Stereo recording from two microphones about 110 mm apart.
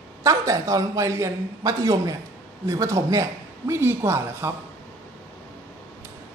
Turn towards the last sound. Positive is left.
turn(degrees=-25)  # may be behind; listen again after turning